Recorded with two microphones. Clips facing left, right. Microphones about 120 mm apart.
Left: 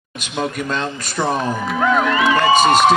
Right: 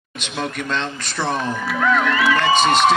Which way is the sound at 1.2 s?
10° left (ahead or behind).